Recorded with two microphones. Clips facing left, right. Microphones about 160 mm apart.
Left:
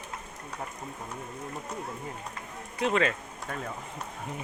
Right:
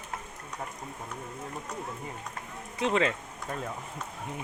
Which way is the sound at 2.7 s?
20° right (ahead or behind).